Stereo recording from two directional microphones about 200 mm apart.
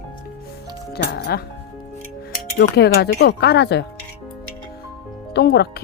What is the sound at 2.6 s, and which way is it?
Speech, 55° left (ahead or behind).